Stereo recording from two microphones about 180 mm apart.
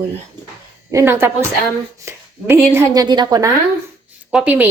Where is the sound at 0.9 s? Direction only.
15° right (ahead or behind).